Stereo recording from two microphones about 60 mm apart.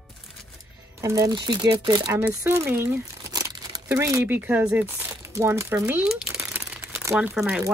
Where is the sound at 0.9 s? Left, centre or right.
Right.